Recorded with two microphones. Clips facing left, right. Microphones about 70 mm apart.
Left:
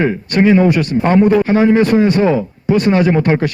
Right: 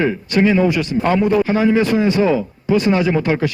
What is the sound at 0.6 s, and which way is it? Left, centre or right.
Speech, left.